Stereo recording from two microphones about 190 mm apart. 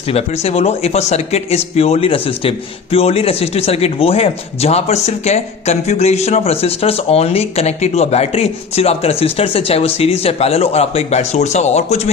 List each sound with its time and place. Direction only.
0.1 s speech: 30° left (ahead or behind)